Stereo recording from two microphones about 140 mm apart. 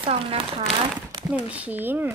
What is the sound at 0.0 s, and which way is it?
Speech, 45° right (ahead or behind).